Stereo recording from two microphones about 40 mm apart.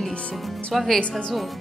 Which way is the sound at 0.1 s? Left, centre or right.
Left.